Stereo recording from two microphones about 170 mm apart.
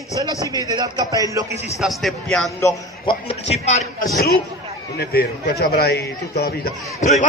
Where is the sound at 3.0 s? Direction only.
35° left (ahead or behind).